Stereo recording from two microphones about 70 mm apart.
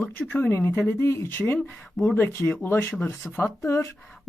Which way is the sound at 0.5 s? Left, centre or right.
Left.